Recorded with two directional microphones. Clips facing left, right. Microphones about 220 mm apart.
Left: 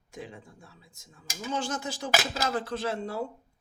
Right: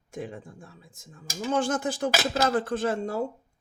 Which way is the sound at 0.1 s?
50° right (ahead or behind).